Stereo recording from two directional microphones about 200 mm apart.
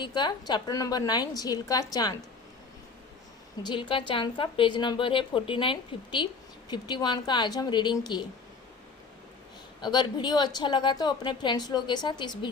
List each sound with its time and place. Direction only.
0.0 s a woman's voice: 20° left (ahead or behind)
3.6 s a woman's voice: 20° left (ahead or behind)
9.8 s a woman's voice: 20° left (ahead or behind)